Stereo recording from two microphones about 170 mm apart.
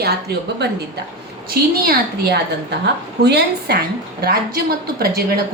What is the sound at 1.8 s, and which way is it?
A woman's voice, 65° right (ahead or behind).